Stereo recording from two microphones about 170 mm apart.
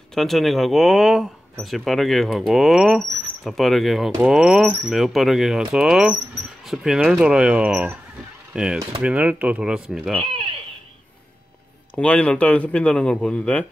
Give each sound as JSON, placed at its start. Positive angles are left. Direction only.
{"t": 0.1, "sound": "speech", "side_deg": 0}
{"t": 10.2, "sound": "a sound", "side_deg": -30}
{"t": 11.9, "sound": "speech", "side_deg": 5}